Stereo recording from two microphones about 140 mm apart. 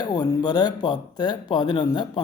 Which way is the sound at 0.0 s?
30° left (ahead or behind).